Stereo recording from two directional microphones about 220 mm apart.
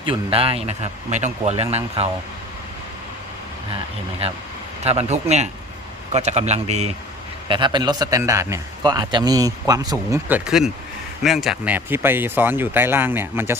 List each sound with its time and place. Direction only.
0.0 s a man's voice: 25° right (ahead or behind)
4.8 s a man's voice: 30° right (ahead or behind); by 13.6 s 10° right (ahead or behind)